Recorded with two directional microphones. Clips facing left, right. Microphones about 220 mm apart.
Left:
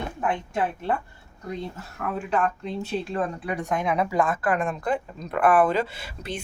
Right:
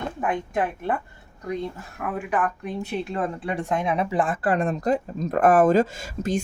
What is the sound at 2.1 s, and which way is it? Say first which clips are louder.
Speech: even; 15° right (ahead or behind).